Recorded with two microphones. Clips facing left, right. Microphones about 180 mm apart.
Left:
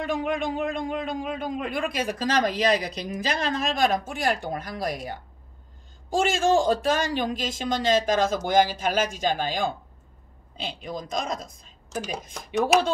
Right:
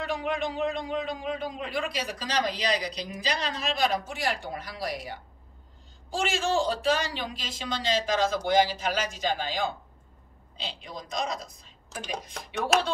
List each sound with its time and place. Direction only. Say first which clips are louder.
0.0 s a man's voice: left 3 dB; 50° left (ahead or behind)